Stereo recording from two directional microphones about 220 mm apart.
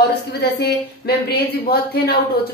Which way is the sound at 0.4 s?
50° left (ahead or behind).